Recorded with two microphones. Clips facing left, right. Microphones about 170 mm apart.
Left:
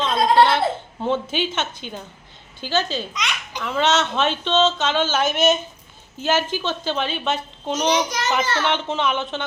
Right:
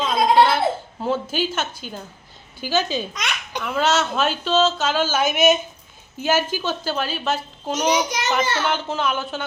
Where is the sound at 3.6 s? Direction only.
5° right (ahead or behind).